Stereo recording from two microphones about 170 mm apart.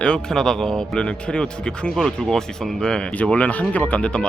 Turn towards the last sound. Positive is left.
turn(degrees=5)  # may be behind; listen again after turning